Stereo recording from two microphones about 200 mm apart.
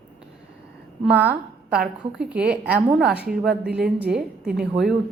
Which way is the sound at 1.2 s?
5° right (ahead or behind).